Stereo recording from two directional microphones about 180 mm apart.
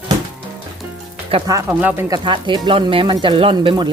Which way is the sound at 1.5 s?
15° right (ahead or behind).